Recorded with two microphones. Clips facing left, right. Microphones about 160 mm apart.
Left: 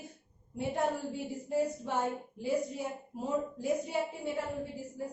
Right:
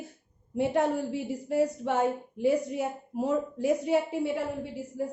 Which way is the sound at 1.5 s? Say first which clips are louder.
Right 5 dB; 75° right (ahead or behind).